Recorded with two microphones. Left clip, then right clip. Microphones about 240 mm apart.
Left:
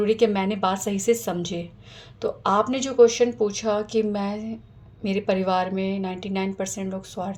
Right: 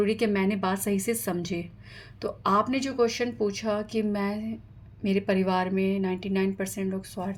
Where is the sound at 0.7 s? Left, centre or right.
Right.